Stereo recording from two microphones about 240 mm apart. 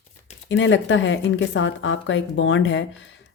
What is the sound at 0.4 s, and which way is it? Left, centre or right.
A woman's voice, left.